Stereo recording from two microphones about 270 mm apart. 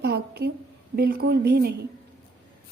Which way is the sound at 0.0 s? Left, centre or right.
Right.